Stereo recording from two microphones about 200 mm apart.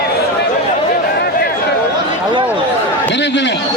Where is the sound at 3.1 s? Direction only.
60° left (ahead or behind).